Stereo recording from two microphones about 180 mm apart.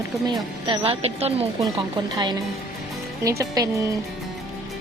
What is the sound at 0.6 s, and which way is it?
Speech, 30° right (ahead or behind).